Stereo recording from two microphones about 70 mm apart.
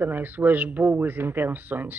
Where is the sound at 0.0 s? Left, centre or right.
Right.